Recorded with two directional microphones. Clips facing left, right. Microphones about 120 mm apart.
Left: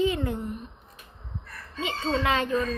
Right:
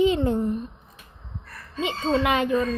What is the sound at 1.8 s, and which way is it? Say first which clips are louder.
Speech: right 4 dB; 20° right (ahead or behind).